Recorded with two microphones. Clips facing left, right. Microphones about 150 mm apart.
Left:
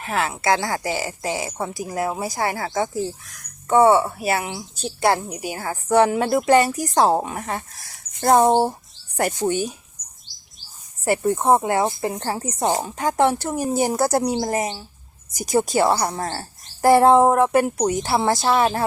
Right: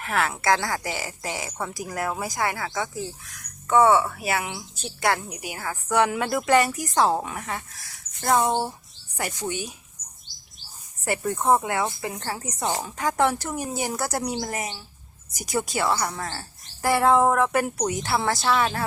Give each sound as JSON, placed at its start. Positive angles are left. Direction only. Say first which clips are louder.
{"t": 0.0, "sound": "speech", "louder": "left 2 dB", "side_deg": 25}
{"t": 11.0, "sound": "speech", "louder": "left 5 dB", "side_deg": 30}